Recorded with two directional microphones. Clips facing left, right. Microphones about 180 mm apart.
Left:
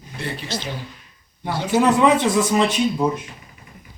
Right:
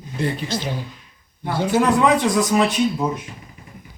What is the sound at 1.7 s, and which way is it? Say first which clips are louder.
Speech: left 1 dB; centre (ahead or behind).